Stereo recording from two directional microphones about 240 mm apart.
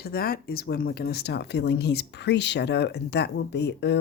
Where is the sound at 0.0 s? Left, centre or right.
Left.